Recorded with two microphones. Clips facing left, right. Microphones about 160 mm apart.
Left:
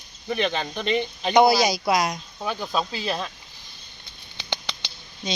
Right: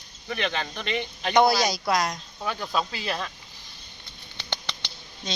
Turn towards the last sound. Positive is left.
turn(degrees=10)  # may be behind; listen again after turning